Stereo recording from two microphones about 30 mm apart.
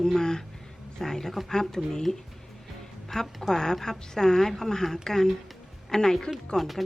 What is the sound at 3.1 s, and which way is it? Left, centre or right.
A woman's voice, centre.